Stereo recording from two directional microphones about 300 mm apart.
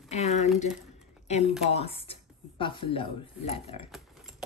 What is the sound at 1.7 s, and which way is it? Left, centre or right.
Speech, centre.